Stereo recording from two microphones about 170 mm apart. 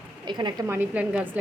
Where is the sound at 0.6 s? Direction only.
10° right (ahead or behind).